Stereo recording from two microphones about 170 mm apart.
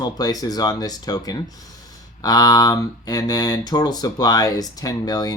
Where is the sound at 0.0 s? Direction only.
20° left (ahead or behind).